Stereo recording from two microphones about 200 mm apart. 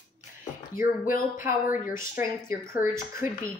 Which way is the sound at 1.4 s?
10° right (ahead or behind).